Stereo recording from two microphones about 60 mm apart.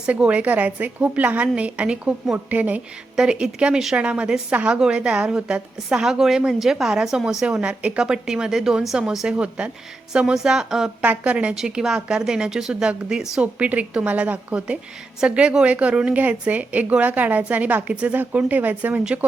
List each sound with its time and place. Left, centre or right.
0.0 s a woman's voice: centre
3.2 s a woman's voice: centre
7.6 s a woman's voice: right; by 9.0 s centre
9.4 s a woman's voice: centre
11.0 s a woman's voice: right
11.5 s a woman's voice: centre
13.4 s a woman's voice: right